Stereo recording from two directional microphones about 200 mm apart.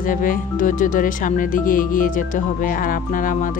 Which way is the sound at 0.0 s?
40° left (ahead or behind).